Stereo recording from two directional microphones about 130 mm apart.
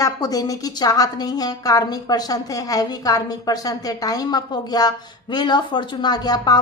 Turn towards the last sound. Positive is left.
turn(degrees=30)  # may be behind; listen again after turning